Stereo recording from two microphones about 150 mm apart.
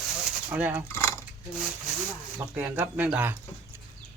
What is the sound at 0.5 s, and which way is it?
Speech, 10° right (ahead or behind).